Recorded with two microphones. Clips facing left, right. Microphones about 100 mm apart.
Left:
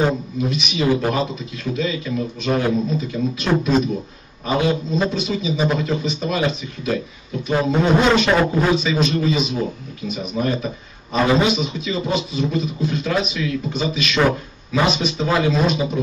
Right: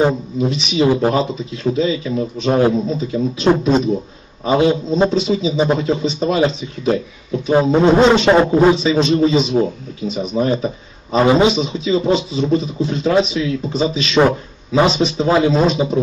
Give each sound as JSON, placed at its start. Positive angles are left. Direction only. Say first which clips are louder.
{"t": 0.0, "sound": "a man's voice", "louder": "right 4 dB", "side_deg": -30}